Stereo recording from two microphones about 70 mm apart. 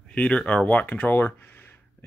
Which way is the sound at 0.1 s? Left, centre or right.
Centre.